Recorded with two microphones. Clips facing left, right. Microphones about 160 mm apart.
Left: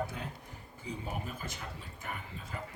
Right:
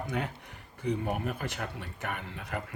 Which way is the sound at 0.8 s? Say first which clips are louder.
Right 9 dB; 65° right (ahead or behind).